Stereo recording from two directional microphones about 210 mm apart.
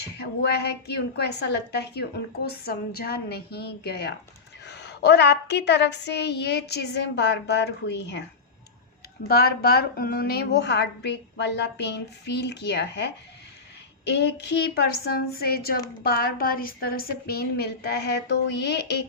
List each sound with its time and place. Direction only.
0.2 s a woman's voice: 50° left (ahead or behind)
9.2 s a woman's voice: 50° left (ahead or behind)